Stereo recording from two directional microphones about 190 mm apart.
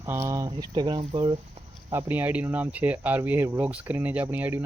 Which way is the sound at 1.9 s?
10° right (ahead or behind).